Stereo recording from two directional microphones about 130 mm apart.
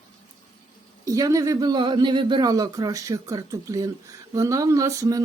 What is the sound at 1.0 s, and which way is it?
Speech, 25° right (ahead or behind).